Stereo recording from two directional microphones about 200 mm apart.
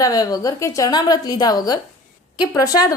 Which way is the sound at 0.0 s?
20° left (ahead or behind).